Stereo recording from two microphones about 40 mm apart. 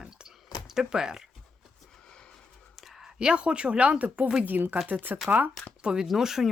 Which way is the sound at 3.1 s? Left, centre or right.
Right.